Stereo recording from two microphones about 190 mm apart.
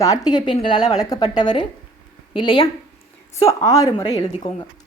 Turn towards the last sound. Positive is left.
turn(degrees=25)  # may be behind; listen again after turning